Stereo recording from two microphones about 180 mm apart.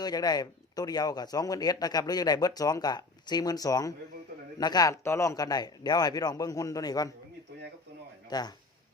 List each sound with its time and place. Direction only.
0.0 s a man's voice: 20° left (ahead or behind)
8.3 s speech: 20° left (ahead or behind)